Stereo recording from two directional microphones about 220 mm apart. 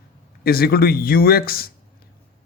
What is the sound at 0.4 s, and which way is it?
A man's voice, 45° left (ahead or behind).